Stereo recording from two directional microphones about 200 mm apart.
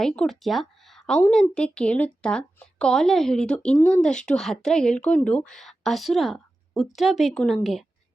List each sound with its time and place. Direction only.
0.0 s a woman's voice: centre (ahead or behind)